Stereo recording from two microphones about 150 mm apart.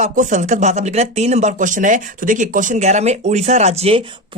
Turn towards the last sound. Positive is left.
turn(degrees=-45)  # may be behind; listen again after turning